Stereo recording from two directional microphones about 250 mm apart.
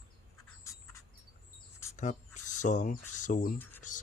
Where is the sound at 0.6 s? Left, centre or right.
Centre.